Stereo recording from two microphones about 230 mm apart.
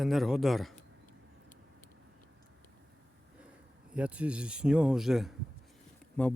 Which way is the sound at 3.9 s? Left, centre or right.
Centre.